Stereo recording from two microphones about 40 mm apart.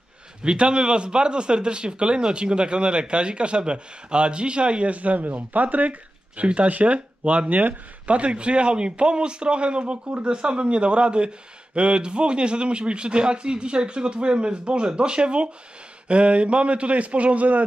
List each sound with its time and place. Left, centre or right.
0.4 s speech: right
10.0 s a man's voice: right
10.3 s a man's voice: right